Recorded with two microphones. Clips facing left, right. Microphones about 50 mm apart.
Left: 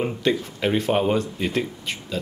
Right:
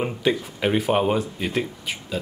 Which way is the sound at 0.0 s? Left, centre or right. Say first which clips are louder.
Even; centre.